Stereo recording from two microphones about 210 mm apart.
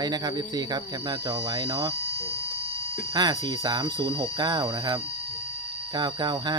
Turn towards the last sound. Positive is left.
turn(degrees=-20)  # may be behind; listen again after turning